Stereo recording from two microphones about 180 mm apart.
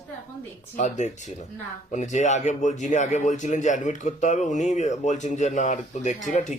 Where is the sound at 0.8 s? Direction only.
40° left (ahead or behind).